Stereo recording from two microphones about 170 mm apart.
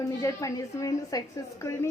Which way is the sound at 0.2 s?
15° left (ahead or behind).